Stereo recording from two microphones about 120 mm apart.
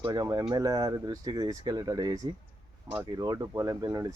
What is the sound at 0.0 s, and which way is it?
Speech, 35° right (ahead or behind).